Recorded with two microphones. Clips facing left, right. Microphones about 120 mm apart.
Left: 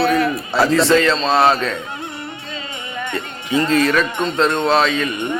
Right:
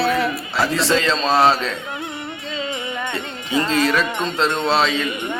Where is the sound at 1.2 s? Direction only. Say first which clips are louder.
Left 1 dB; 10° right (ahead or behind).